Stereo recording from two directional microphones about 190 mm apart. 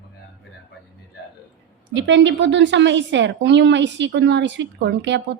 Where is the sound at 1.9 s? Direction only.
70° right (ahead or behind).